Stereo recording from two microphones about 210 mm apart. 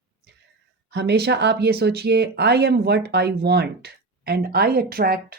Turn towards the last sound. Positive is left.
turn(degrees=-45)  # may be behind; listen again after turning